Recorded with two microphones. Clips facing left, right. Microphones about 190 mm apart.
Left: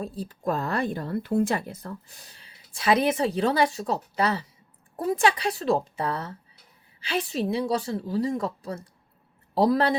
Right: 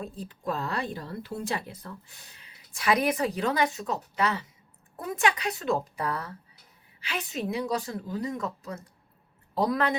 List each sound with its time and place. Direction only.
0.0 s speech: 35° left (ahead or behind)